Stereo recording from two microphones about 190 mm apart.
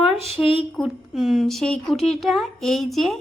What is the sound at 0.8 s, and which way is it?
A woman's voice, centre (ahead or behind).